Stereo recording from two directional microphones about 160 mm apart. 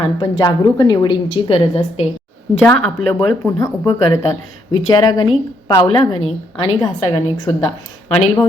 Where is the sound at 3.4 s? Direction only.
20° left (ahead or behind).